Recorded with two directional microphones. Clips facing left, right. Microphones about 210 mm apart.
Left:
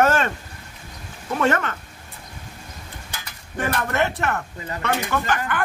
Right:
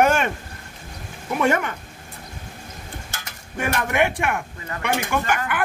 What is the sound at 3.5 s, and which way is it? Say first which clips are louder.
Speech: right 1 dB; 10° right (ahead or behind).